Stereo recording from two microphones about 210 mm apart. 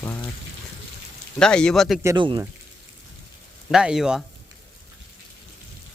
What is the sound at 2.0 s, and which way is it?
Speech, 20° right (ahead or behind).